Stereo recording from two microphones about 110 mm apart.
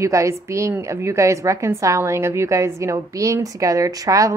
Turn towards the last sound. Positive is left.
turn(degrees=-30)  # may be behind; listen again after turning